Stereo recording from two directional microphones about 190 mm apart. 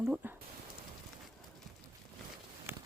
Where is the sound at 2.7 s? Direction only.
10° right (ahead or behind).